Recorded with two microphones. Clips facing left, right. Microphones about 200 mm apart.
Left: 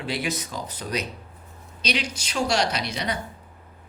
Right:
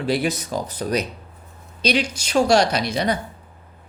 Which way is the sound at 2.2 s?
50° right (ahead or behind).